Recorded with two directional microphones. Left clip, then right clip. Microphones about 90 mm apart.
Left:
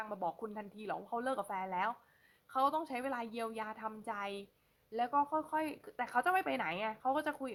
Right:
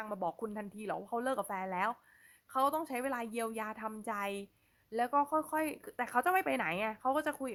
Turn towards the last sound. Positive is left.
turn(degrees=-35)  # may be behind; listen again after turning